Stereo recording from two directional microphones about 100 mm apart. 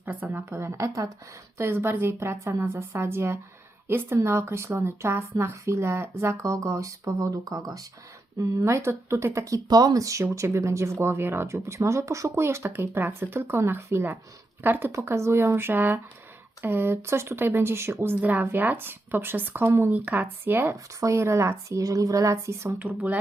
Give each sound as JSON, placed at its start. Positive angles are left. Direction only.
{"t": 0.0, "sound": "speech", "side_deg": -15}
{"t": 22.8, "sound": "speech", "side_deg": -15}